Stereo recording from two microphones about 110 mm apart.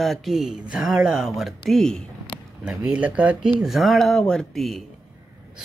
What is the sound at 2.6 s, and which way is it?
Speech, 10° right (ahead or behind).